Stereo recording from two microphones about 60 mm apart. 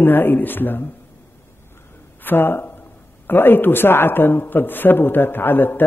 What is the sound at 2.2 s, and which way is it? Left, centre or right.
A man's voice, left.